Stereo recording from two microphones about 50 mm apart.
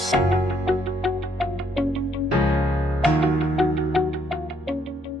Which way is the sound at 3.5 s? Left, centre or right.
Centre.